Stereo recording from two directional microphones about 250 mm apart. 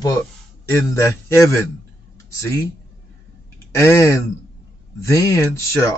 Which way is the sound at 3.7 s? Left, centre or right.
Centre.